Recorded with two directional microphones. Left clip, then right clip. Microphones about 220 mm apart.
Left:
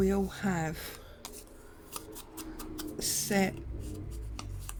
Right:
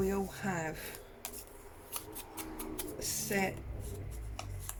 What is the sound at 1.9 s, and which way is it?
Scissors, 10° left (ahead or behind).